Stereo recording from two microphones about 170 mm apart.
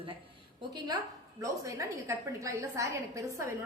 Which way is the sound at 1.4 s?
20° right (ahead or behind).